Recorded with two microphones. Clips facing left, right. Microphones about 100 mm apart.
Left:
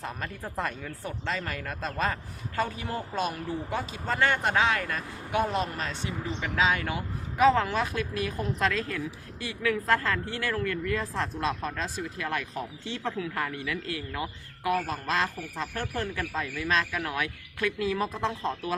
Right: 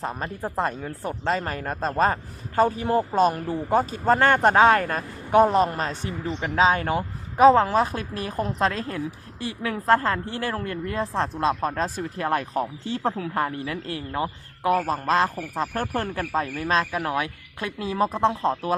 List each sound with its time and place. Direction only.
0.0 s speech: 35° right (ahead or behind)